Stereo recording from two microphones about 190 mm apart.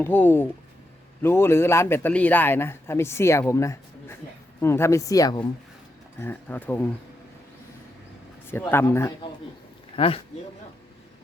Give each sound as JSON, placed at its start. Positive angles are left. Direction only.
{"t": 0.0, "sound": "a man's voice", "side_deg": 10}
{"t": 6.1, "sound": "a man's voice", "side_deg": 10}
{"t": 8.4, "sound": "a man's voice", "side_deg": 10}
{"t": 9.9, "sound": "speech", "side_deg": 30}